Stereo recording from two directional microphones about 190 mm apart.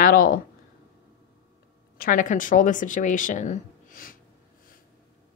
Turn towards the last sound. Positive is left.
turn(degrees=45)  # may be behind; listen again after turning